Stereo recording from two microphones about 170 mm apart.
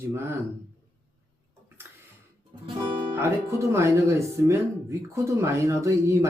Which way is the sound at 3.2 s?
15° right (ahead or behind).